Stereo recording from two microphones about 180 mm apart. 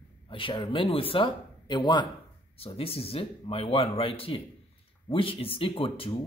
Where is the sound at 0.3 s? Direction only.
25° left (ahead or behind).